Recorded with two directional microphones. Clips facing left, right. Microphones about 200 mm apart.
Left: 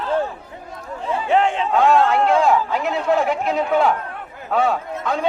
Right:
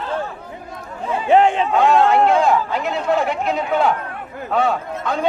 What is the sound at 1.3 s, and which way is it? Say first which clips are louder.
Speech: right 4 dB; 15° right (ahead or behind).